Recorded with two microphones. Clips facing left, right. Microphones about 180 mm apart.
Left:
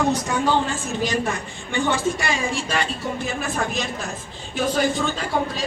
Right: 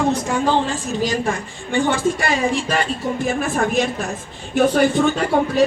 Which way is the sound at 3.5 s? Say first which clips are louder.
Right 7 dB; 55° right (ahead or behind).